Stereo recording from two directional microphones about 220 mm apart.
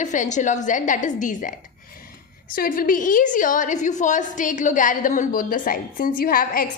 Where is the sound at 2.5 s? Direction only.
40° left (ahead or behind).